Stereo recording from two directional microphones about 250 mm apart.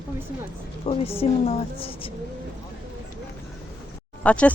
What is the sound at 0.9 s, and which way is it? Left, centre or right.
Speech, left.